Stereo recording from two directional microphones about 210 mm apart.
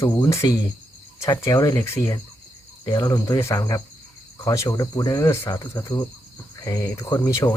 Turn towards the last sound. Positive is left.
turn(degrees=15)  # may be behind; listen again after turning